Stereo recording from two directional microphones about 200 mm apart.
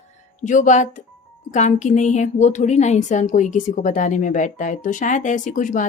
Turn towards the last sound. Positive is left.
turn(degrees=40)  # may be behind; listen again after turning